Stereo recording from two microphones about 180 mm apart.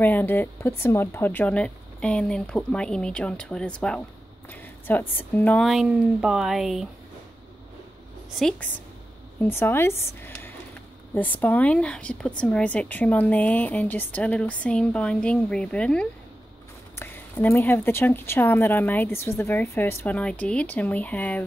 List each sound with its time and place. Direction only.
0.0 s speech: 10° left (ahead or behind)
8.4 s speech: 5° left (ahead or behind)